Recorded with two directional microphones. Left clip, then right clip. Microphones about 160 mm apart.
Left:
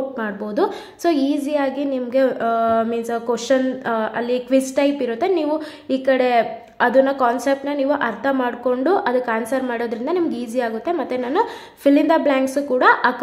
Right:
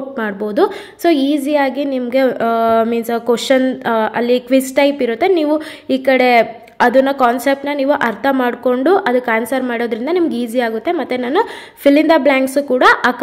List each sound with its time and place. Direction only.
0.2 s a woman's voice: 20° right (ahead or behind)